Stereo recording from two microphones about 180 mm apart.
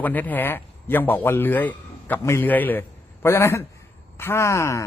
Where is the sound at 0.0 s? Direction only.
10° left (ahead or behind).